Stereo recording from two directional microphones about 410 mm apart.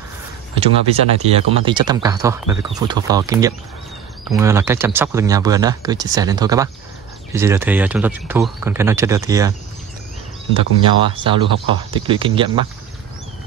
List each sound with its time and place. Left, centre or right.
0.6 s speech: centre
10.5 s speech: centre